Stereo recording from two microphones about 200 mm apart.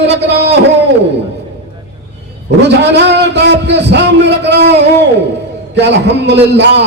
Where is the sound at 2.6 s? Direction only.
60° right (ahead or behind).